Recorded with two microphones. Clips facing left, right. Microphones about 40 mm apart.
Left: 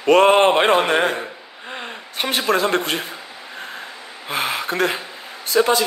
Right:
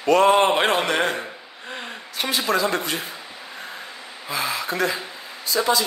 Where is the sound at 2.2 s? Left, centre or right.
Left.